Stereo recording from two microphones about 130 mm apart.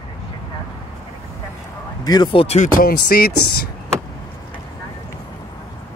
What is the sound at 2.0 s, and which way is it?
Speech, 30° left (ahead or behind).